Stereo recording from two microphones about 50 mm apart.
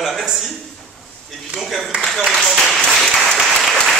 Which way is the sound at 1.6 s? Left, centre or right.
Centre.